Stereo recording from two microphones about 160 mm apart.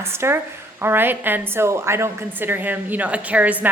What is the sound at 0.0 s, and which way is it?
A woman's voice, 15° right (ahead or behind).